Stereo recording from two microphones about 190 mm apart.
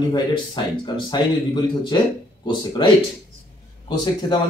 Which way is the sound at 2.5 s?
25° left (ahead or behind).